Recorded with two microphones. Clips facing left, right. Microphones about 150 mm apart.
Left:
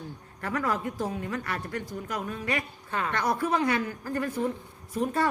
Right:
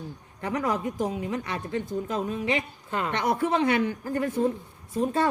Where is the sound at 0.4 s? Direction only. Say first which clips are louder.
Right 2 dB; 20° right (ahead or behind).